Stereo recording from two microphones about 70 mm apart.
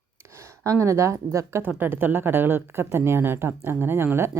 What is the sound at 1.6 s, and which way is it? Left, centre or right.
A woman's voice, right.